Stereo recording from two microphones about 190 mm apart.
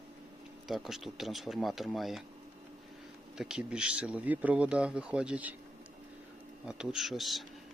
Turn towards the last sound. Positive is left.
turn(degrees=0)  # may be behind; listen again after turning